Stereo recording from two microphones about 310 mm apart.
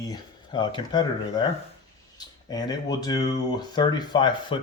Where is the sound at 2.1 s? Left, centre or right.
Centre.